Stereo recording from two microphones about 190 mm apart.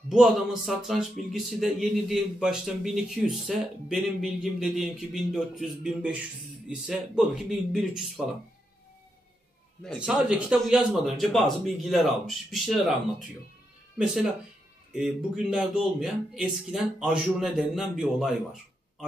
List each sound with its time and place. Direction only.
0.1 s speech: centre (ahead or behind)
9.9 s speech: 5° right (ahead or behind)
13.9 s speech: 5° right (ahead or behind)